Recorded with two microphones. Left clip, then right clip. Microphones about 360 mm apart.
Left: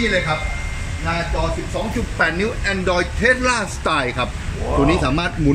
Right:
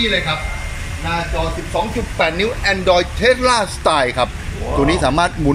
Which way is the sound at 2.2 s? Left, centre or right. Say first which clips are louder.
Right 2 dB; centre.